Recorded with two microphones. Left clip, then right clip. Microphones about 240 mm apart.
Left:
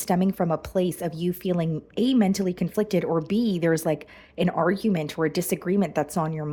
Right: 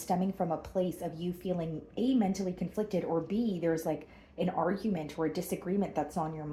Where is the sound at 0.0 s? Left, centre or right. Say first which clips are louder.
Left 7 dB; left.